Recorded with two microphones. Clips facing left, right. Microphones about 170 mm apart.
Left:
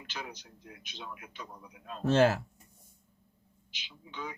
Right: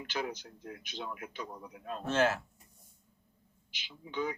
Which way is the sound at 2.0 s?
35° left (ahead or behind).